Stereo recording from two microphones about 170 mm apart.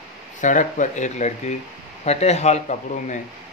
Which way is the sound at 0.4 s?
45° left (ahead or behind).